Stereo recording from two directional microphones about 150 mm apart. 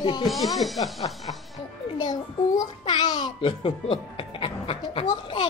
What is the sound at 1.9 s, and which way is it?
A child's voice, 25° left (ahead or behind).